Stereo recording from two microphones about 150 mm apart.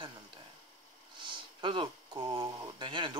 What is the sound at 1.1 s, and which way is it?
Speech, 35° right (ahead or behind).